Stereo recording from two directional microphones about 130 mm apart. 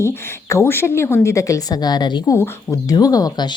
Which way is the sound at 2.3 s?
25° left (ahead or behind).